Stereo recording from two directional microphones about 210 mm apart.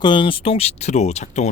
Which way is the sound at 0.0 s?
25° left (ahead or behind).